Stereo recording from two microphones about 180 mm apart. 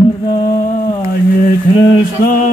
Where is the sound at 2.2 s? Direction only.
50° left (ahead or behind).